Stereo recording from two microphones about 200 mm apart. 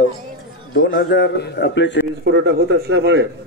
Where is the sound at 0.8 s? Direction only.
60° left (ahead or behind).